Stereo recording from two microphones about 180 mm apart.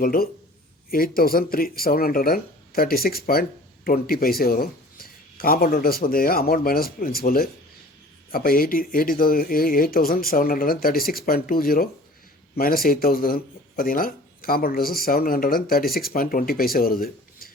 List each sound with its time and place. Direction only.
0.0 s speech: 50° left (ahead or behind)